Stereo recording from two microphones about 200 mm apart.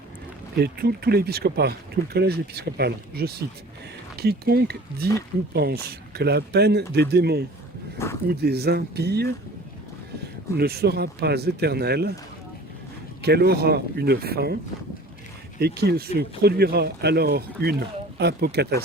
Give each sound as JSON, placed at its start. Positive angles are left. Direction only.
{"t": 0.5, "sound": "speech", "side_deg": -50}
{"t": 7.9, "sound": "a sound", "side_deg": 15}
{"t": 8.3, "sound": "speech", "side_deg": -55}
{"t": 10.6, "sound": "speech", "side_deg": -50}
{"t": 13.2, "sound": "speech", "side_deg": -55}
{"t": 15.5, "sound": "speech", "side_deg": -55}